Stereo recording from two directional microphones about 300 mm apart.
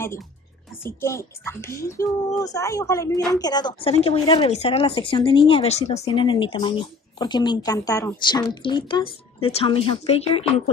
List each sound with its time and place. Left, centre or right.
0.8 s speech: centre